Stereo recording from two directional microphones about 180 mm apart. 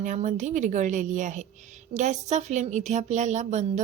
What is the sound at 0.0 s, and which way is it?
A woman's voice, 40° right (ahead or behind).